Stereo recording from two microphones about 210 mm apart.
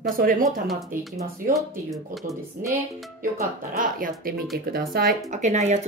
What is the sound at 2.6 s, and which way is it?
Speech, 40° right (ahead or behind).